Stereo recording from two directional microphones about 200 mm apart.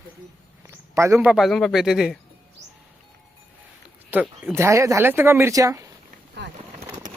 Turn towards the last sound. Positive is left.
turn(degrees=-15)  # may be behind; listen again after turning